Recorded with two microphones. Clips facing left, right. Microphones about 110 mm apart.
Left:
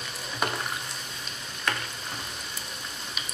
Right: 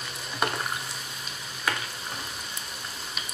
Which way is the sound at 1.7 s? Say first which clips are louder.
Right 1 dB; 5° right (ahead or behind).